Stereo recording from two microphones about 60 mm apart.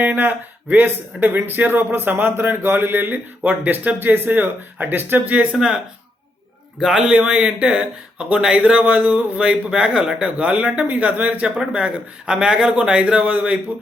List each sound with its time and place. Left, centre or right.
0.0 s speech: right
5.5 s speech: centre
7.1 s speech: centre